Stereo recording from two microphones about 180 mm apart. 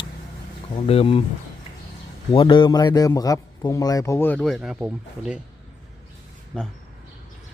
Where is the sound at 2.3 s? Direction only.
25° left (ahead or behind); by 5.4 s 5° right (ahead or behind).